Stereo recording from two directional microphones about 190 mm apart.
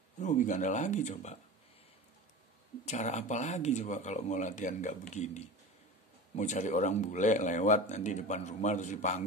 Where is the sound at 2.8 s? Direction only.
40° left (ahead or behind).